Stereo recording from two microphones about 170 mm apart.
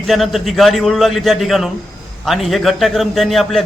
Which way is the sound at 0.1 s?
Centre (ahead or behind).